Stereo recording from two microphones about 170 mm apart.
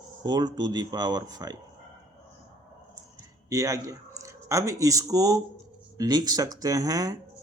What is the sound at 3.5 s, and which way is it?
Speech, 20° right (ahead or behind).